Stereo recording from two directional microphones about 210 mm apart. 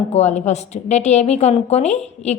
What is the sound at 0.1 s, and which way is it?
A woman's voice, 30° left (ahead or behind).